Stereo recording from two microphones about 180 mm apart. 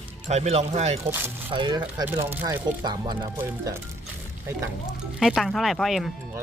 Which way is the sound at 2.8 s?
25° right (ahead or behind).